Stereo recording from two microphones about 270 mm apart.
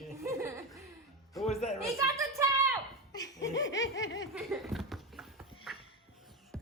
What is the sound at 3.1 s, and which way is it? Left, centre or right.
Laughter, centre.